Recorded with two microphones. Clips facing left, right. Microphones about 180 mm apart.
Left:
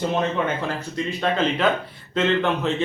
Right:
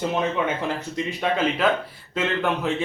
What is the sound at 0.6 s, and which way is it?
Speech, 15° right (ahead or behind).